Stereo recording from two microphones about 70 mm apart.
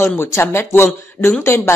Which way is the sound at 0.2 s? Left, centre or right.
Left.